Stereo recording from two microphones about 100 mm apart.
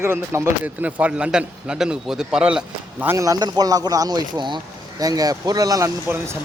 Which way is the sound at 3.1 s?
35° right (ahead or behind).